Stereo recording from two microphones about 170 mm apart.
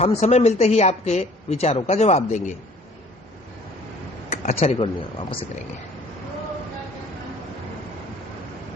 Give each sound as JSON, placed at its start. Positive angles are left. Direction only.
{"t": 0.0, "sound": "speech", "side_deg": 40}
{"t": 4.3, "sound": "speech", "side_deg": 40}